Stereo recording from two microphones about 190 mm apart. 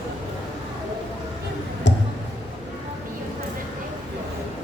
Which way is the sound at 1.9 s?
70° left (ahead or behind).